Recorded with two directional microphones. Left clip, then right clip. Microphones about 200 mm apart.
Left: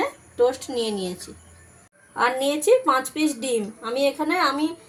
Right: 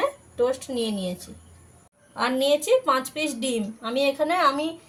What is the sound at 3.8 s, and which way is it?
Speech, 15° left (ahead or behind).